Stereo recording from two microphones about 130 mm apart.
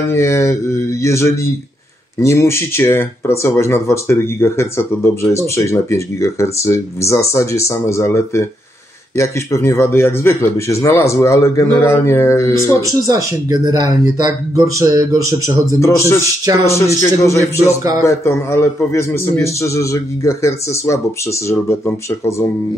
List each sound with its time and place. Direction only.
0.1 s speech: 20° left (ahead or behind)
13.0 s speech: 30° right (ahead or behind)
16.6 s speech: 20° left (ahead or behind)